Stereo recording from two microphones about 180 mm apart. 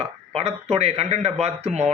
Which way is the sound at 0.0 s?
35° right (ahead or behind).